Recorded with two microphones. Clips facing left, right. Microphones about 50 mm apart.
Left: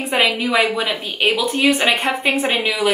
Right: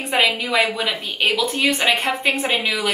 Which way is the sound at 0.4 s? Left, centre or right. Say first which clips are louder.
Left 2 dB; centre.